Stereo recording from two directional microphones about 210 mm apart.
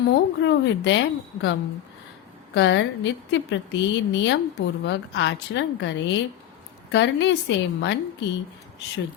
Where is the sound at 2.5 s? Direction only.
55° left (ahead or behind).